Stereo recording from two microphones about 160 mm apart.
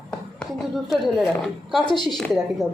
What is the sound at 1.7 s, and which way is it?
Speech, centre (ahead or behind).